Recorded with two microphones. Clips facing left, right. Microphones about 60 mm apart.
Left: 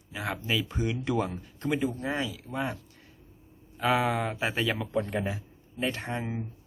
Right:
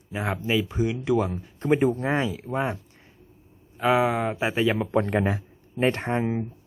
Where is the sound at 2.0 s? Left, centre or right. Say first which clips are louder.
Right 6 dB; right.